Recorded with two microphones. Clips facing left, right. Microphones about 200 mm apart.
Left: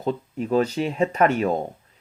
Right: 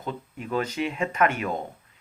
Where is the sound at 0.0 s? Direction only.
35° left (ahead or behind).